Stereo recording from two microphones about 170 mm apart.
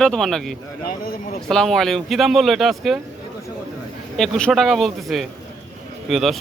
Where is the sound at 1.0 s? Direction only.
55° left (ahead or behind).